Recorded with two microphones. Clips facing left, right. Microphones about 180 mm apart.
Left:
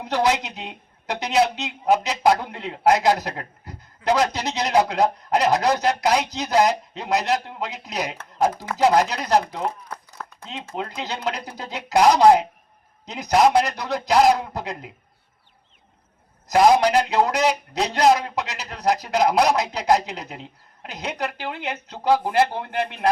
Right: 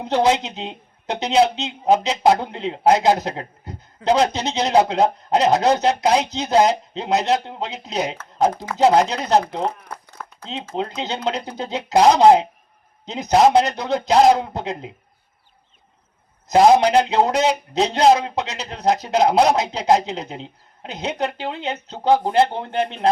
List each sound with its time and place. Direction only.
0.0 s speech: 25° right (ahead or behind)
10.2 s a sound: centre (ahead or behind)
10.8 s speech: 25° right (ahead or behind)
16.5 s speech: 25° right (ahead or behind)